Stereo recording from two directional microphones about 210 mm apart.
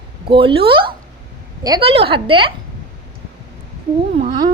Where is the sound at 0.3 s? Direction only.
25° right (ahead or behind).